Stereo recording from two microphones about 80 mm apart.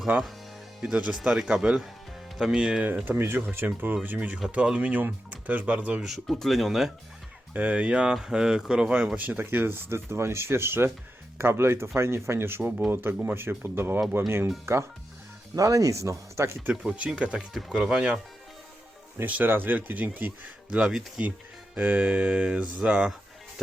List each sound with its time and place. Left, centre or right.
0.1 s speech: right
3.0 s speech: right
4.4 s speech: centre
6.1 s speech: centre
7.5 s speech: centre
15.5 s speech: right
16.8 s speech: centre
19.2 s speech: right
20.7 s speech: centre